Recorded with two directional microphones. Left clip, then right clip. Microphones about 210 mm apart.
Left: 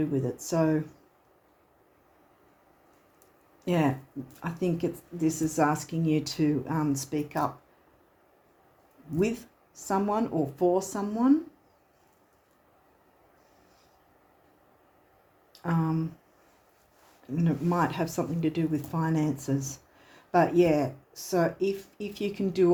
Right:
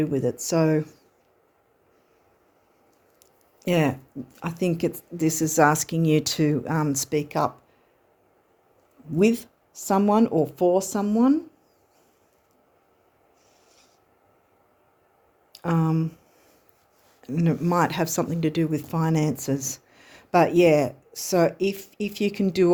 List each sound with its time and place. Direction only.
0.0 s speech: 55° right (ahead or behind)
3.6 s speech: 55° right (ahead or behind)
9.1 s speech: 55° right (ahead or behind)
15.5 s speech: 55° right (ahead or behind)
17.2 s speech: 55° right (ahead or behind)